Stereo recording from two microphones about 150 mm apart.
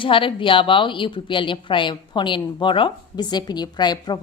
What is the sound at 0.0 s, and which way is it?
A woman's voice, 35° left (ahead or behind).